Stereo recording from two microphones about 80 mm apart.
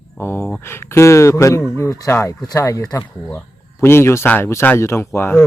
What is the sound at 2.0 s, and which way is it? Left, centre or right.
A man's voice, left.